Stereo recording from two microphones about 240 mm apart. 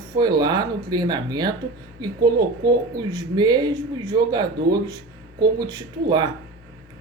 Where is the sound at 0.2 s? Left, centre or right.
Centre.